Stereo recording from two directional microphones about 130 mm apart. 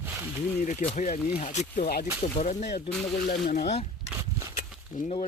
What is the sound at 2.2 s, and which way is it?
Speech, 60° left (ahead or behind).